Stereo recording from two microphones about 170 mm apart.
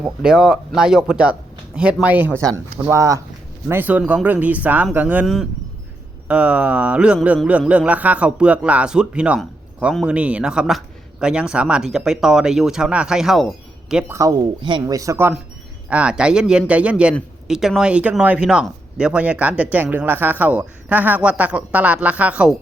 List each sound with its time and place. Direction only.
0.0 s a man's voice: 5° right (ahead or behind)
13.9 s speech: 15° right (ahead or behind)
15.9 s a man's voice: 5° right (ahead or behind)